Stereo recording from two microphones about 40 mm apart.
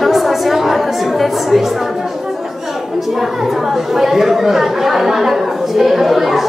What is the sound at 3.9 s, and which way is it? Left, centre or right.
Speech, centre.